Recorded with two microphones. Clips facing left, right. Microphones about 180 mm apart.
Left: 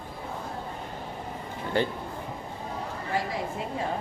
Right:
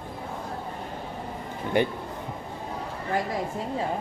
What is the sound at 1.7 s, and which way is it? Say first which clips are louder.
Speech: right 3 dB; 15° right (ahead or behind).